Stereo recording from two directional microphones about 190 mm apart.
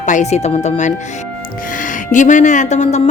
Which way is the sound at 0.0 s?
40° left (ahead or behind).